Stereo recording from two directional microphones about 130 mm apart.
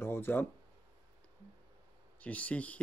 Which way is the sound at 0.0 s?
15° left (ahead or behind).